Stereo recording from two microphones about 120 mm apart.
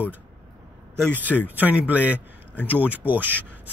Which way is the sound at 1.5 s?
15° right (ahead or behind).